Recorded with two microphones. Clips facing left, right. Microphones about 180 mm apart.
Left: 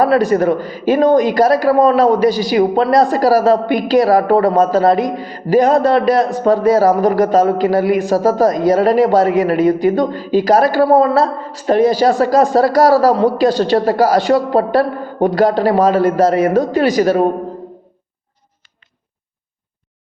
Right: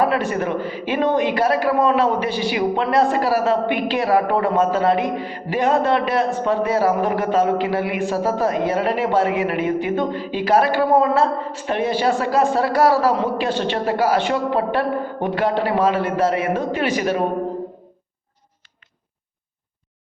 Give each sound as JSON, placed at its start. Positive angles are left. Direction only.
{"t": 0.0, "sound": "a man's voice", "side_deg": 40}